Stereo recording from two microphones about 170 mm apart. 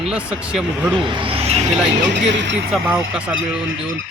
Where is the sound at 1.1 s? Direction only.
30° right (ahead or behind).